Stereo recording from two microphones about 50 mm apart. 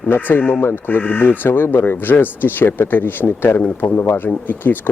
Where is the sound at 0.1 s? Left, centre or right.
Left.